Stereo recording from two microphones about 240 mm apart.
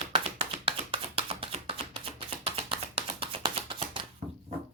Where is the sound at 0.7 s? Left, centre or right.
Right.